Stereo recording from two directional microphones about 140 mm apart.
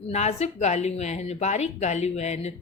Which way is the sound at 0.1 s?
50° left (ahead or behind).